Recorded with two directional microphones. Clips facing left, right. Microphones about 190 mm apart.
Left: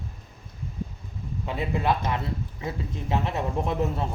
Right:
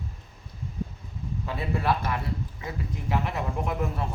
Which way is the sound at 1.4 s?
20° left (ahead or behind).